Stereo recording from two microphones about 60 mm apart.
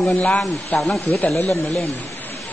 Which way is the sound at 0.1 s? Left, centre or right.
Left.